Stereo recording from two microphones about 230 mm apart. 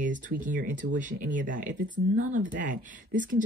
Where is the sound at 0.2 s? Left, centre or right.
Right.